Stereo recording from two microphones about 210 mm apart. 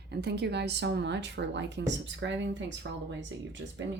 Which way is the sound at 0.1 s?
50° right (ahead or behind).